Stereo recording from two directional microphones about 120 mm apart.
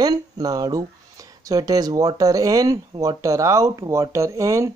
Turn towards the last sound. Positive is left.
turn(degrees=-25)  # may be behind; listen again after turning